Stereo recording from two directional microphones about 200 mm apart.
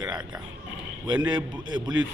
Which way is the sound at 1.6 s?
20° right (ahead or behind).